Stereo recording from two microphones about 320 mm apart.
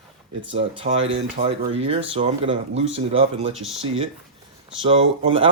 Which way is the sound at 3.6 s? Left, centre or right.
Centre.